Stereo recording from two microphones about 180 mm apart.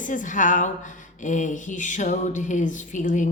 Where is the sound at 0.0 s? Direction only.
45° left (ahead or behind).